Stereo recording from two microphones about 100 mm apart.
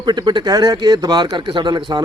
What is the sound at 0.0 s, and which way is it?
A man's voice, 45° right (ahead or behind).